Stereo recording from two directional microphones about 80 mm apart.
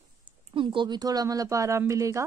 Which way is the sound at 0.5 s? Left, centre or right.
Right.